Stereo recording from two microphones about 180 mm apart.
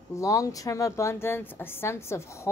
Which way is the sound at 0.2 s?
20° left (ahead or behind).